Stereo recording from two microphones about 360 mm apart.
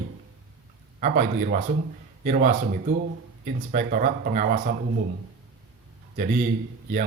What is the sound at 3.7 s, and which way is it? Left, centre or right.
Speech, right.